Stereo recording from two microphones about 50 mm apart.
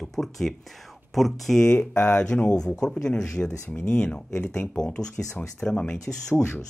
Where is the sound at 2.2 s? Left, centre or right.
Centre.